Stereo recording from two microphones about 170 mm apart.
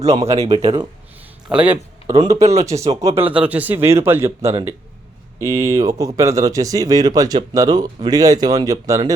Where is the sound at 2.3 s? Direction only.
40° right (ahead or behind).